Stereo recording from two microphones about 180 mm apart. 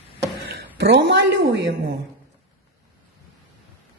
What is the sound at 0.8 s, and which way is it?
Speech, 75° right (ahead or behind).